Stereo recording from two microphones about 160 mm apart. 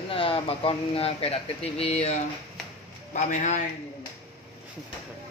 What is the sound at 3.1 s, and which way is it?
Speech, 45° left (ahead or behind).